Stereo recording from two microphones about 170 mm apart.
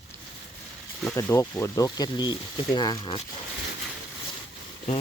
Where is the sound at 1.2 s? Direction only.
15° left (ahead or behind).